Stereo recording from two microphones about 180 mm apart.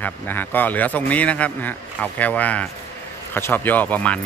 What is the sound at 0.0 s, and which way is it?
Speech, 10° left (ahead or behind).